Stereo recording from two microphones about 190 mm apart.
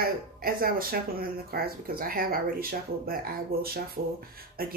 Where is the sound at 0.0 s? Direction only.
50° right (ahead or behind).